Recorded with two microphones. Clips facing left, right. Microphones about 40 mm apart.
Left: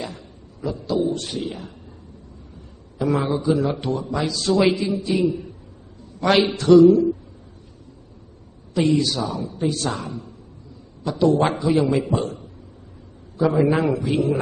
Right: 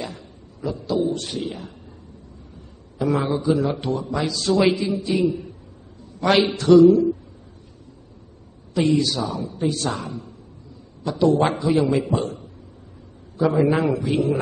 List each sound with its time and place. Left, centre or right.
0.0 s a man's voice: centre
3.0 s a woman's voice: centre
8.7 s a woman's voice: centre